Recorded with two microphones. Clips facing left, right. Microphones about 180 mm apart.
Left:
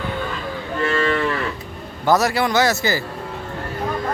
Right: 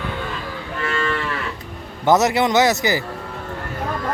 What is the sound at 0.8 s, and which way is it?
Moo, 35° left (ahead or behind).